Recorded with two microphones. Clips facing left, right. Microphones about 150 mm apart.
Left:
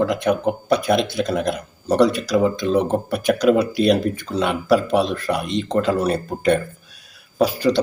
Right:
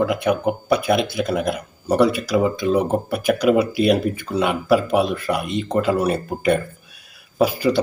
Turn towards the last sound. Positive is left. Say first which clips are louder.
# left 1 dB
turn(degrees=-5)  # may be behind; listen again after turning